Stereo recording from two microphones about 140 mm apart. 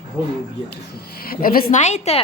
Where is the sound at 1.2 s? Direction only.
90° left; by 2.2 s 50° left (ahead or behind).